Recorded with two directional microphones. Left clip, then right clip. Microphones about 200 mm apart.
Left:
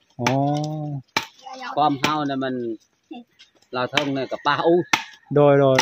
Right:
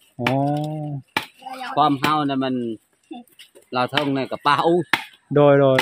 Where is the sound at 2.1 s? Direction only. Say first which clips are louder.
Right 3 dB; 60° right (ahead or behind).